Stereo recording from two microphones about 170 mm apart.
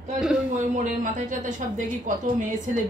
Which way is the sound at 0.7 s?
45° right (ahead or behind).